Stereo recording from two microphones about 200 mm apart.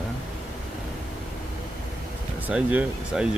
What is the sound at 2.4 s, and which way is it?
Speech, 5° right (ahead or behind).